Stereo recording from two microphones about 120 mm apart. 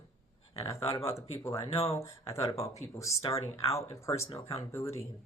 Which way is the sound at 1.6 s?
55° left (ahead or behind).